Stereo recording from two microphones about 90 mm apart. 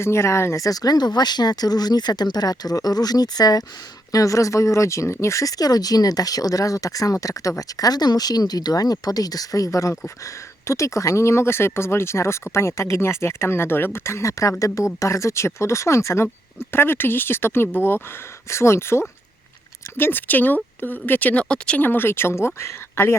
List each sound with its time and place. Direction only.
0.0 s speech: 30° left (ahead or behind); by 21.8 s 10° left (ahead or behind)
21.8 s speech: 25° left (ahead or behind)